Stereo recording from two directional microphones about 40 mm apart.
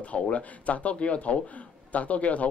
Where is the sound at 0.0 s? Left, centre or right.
Left.